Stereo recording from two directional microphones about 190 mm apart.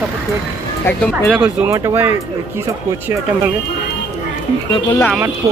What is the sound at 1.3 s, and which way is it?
Speech, 10° right (ahead or behind).